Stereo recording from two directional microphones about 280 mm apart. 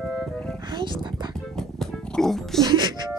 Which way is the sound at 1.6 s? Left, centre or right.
Centre.